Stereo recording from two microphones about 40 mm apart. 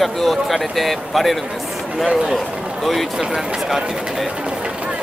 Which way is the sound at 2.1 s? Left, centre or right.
Right.